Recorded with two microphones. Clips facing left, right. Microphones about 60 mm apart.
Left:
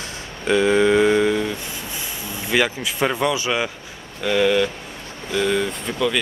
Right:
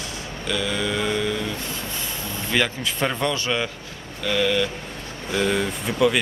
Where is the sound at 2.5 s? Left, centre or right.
Centre.